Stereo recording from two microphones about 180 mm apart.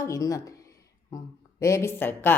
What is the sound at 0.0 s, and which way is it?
Speech, 15° left (ahead or behind).